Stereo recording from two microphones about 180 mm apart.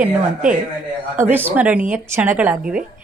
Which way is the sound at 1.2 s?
10° right (ahead or behind).